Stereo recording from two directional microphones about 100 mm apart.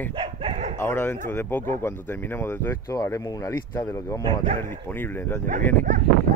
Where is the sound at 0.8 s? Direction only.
20° left (ahead or behind).